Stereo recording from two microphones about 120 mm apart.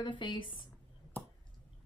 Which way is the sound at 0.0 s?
40° left (ahead or behind).